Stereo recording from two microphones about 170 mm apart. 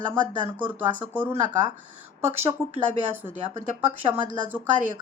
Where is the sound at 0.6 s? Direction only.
10° right (ahead or behind).